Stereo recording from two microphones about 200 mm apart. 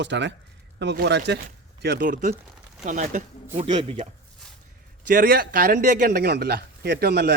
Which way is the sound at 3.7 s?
25° right (ahead or behind).